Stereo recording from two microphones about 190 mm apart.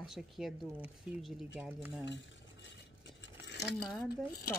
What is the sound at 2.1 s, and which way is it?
Cutlery, 75° left (ahead or behind).